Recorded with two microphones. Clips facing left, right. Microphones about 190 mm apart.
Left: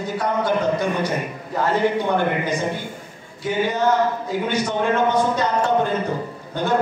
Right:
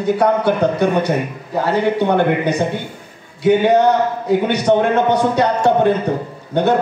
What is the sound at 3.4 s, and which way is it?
A man's voice, 65° right (ahead or behind).